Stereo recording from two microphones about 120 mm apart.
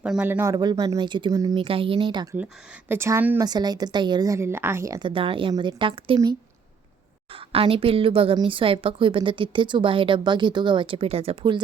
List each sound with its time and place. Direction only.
0.0 s speech: 10° right (ahead or behind)
0.5 s a woman's voice: 35° right (ahead or behind)
1.5 s a woman's voice: 50° right (ahead or behind)
2.9 s a woman's voice: 20° right (ahead or behind)
3.4 s a woman's voice: 35° right (ahead or behind)
5.0 s a woman's voice: 45° right (ahead or behind)
7.3 s a woman's voice: 50° right (ahead or behind)